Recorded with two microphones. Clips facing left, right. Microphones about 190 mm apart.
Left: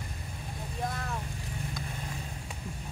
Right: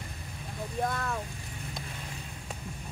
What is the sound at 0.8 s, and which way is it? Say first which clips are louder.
Vehicle: right 2 dB; 60° right (ahead or behind).